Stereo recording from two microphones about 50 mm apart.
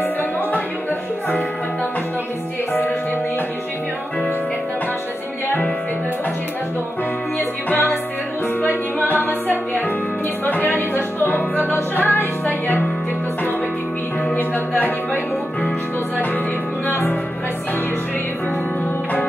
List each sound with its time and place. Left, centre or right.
7.3 s music: left
10.4 s music: left
14.5 s music: left
16.8 s music: left